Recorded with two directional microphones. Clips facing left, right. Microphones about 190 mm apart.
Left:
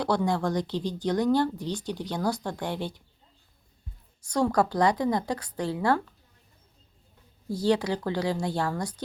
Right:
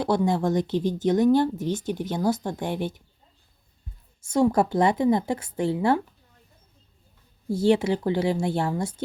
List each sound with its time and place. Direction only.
0.3 s speech: 20° right (ahead or behind)
4.2 s speech: 25° right (ahead or behind)
7.5 s speech: 25° right (ahead or behind)